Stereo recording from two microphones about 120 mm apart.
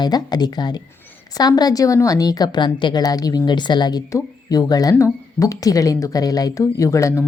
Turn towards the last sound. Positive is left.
turn(degrees=25)  # may be behind; listen again after turning